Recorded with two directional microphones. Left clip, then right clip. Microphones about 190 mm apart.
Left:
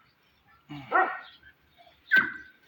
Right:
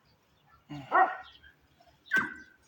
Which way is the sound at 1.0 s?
75° right (ahead or behind).